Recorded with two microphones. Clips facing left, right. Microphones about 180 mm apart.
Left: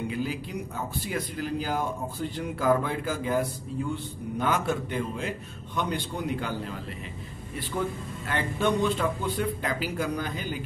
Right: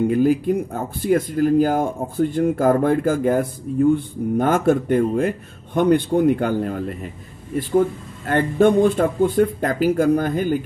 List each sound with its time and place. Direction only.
0.1 s speech: 50° right (ahead or behind)